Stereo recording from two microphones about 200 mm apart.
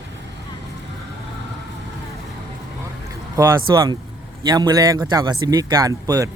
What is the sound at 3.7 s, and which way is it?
A man's voice, 20° right (ahead or behind).